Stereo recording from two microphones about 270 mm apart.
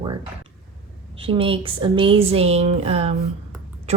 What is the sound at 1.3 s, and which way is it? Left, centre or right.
A woman's voice, centre.